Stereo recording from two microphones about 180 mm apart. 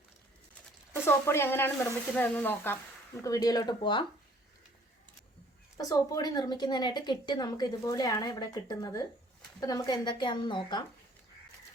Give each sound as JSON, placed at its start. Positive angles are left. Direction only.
{"t": 1.0, "sound": "speech", "side_deg": 15}
{"t": 3.2, "sound": "a woman's voice", "side_deg": 20}
{"t": 5.7, "sound": "a woman's voice", "side_deg": 20}